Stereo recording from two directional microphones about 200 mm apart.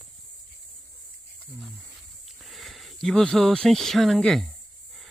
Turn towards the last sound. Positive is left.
turn(degrees=0)  # may be behind; listen again after turning